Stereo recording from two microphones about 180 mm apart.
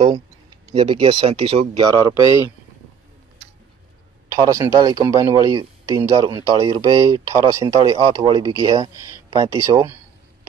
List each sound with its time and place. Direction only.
0.7 s speech: 25° right (ahead or behind)
1.9 s speech: 20° right (ahead or behind)
4.3 s a man's voice: 15° right (ahead or behind)